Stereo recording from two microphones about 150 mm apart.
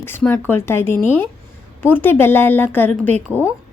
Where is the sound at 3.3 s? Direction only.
15° right (ahead or behind).